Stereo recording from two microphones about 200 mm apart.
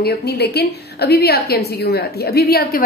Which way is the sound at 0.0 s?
55° left (ahead or behind).